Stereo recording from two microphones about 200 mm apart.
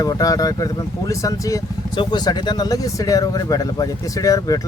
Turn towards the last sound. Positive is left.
turn(degrees=15)  # may be behind; listen again after turning